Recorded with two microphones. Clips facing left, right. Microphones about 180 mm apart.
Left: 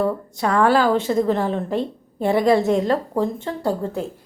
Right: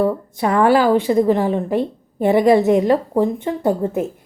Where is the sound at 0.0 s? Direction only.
15° right (ahead or behind).